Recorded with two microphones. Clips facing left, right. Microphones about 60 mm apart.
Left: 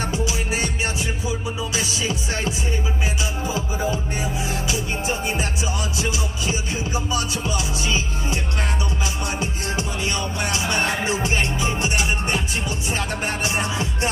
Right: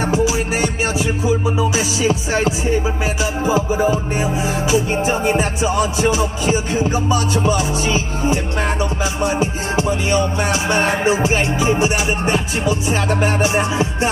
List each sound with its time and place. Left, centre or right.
0.0 s music: right
1.8 s music: right
3.4 s music: right
12.9 s music: right
13.4 s music: right